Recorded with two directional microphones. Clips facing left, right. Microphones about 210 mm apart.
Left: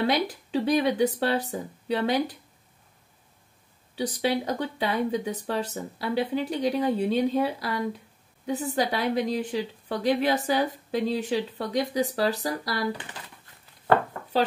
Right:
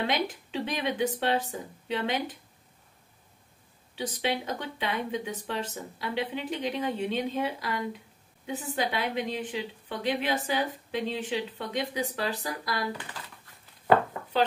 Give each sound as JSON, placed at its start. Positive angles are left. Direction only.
{"t": 0.0, "sound": "a woman's voice", "side_deg": 40}
{"t": 3.9, "sound": "a woman's voice", "side_deg": 40}